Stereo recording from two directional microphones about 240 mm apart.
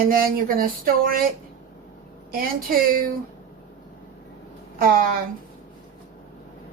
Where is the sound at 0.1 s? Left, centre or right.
Right.